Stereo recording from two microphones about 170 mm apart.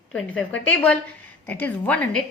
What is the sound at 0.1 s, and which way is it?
A woman's voice, 5° left (ahead or behind).